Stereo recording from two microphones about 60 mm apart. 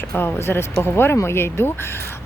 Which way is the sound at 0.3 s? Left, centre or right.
Left.